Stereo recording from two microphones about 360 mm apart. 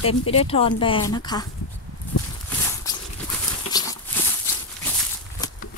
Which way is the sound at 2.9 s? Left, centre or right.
Centre.